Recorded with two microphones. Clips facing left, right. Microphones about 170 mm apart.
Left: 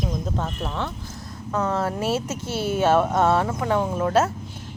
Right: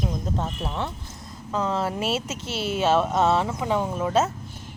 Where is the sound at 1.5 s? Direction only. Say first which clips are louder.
Left 1 dB; 25° right (ahead or behind).